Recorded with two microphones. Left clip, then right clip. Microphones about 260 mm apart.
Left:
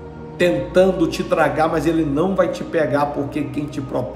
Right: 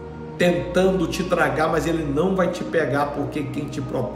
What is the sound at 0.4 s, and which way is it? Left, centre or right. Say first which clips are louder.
A man's voice: left 4 dB; centre.